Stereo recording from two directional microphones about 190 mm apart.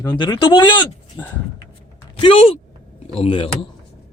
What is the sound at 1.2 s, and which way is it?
Speech, 10° left (ahead or behind).